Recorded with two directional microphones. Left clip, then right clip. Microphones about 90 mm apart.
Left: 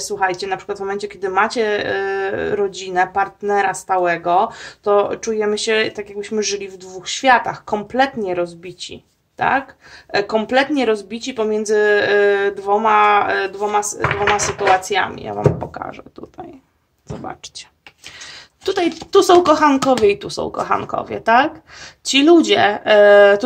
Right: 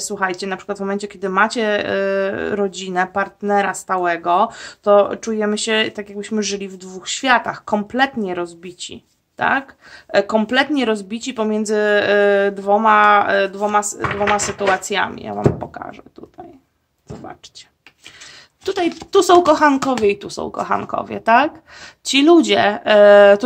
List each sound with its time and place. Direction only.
0.0 s speech: 55° right (ahead or behind); by 15.3 s 40° right (ahead or behind)
15.3 s speech: 15° right (ahead or behind)
18.6 s speech: 20° right (ahead or behind)
19.1 s speech: 40° right (ahead or behind)
20.1 s speech: 20° right (ahead or behind); by 23.4 s 45° right (ahead or behind)